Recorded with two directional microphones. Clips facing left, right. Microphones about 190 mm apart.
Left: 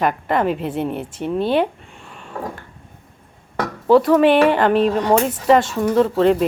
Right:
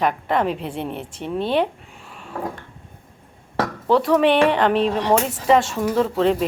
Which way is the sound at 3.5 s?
Centre (ahead or behind).